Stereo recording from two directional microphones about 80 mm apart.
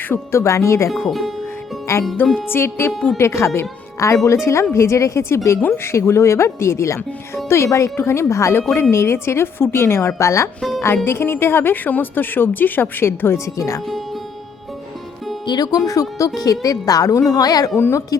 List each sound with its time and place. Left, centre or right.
0.1 s speech: left
0.9 s speech: centre
1.9 s speech: left
2.9 s speech: centre
3.2 s a woman's voice: left
15.4 s speech: left
17.7 s a woman's voice: left